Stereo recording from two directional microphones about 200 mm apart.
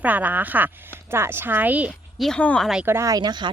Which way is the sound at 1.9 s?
5° left (ahead or behind).